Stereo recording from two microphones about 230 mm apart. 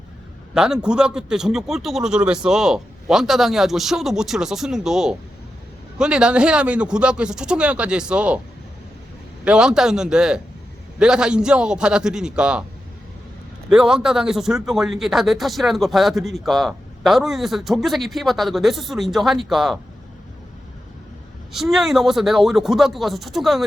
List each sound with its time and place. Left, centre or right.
0.5 s speech: centre
9.4 s speech: centre
13.7 s speech: centre
21.5 s speech: centre